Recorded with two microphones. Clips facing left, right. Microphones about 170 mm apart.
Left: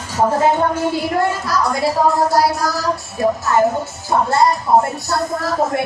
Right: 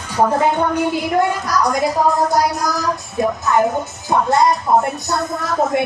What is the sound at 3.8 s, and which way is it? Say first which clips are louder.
Music: even; 20° right (ahead or behind).